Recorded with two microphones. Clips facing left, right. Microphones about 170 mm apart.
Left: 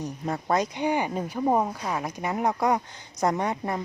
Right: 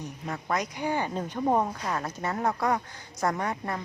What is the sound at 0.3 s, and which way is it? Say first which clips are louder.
Speech: left 5 dB; 30° left (ahead or behind).